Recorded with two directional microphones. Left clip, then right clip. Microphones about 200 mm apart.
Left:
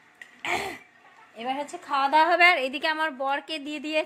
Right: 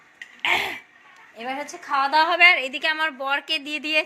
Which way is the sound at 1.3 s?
10° left (ahead or behind).